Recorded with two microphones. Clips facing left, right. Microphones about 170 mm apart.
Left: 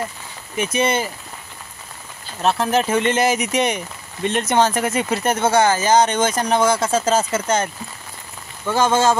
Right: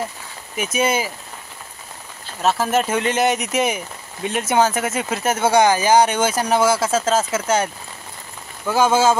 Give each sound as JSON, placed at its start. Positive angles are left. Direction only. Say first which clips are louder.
{"t": 0.6, "sound": "speech", "louder": "left 1 dB", "side_deg": -5}
{"t": 2.4, "sound": "speech", "louder": "even", "side_deg": 0}